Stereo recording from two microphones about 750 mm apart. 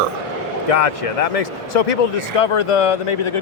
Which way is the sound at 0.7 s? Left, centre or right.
Left.